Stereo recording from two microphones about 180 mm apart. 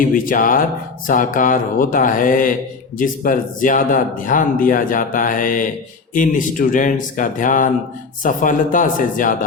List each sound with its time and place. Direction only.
0.0 s speech: 50° left (ahead or behind)